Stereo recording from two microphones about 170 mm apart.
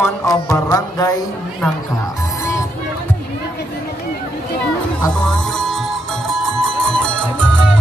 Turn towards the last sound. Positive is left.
turn(degrees=5)  # may be behind; listen again after turning